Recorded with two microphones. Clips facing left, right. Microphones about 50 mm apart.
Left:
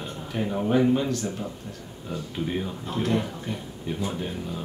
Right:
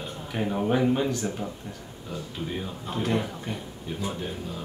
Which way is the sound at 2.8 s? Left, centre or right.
Centre.